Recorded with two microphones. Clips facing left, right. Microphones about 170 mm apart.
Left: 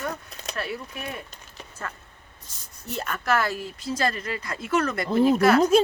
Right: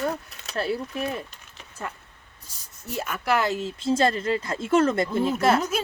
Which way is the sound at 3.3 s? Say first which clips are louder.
Right 2 dB; 20° right (ahead or behind).